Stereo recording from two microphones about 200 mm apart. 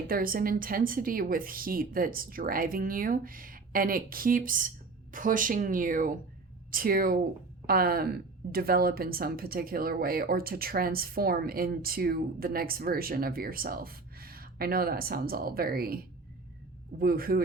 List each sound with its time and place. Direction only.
0.1 s a woman's voice: 45° right (ahead or behind)
17.0 s a woman's voice: 45° right (ahead or behind)